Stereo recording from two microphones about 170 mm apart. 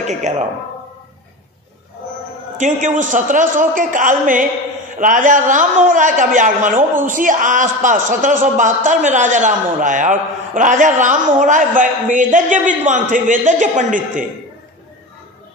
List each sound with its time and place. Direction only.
0.0 s speech: 45° right (ahead or behind)
2.6 s a man's voice: 50° right (ahead or behind)